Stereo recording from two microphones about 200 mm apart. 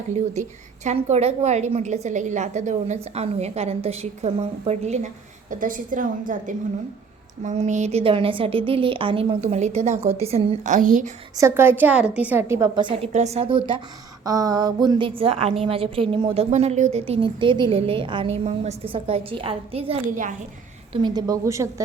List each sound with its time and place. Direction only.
0.1 s a woman's voice: 35° right (ahead or behind)
11.3 s a woman's voice: 15° right (ahead or behind)
12.9 s a woman's voice: 35° right (ahead or behind)
20.1 s a woman's voice: 40° right (ahead or behind)
20.9 s a woman's voice: 20° right (ahead or behind)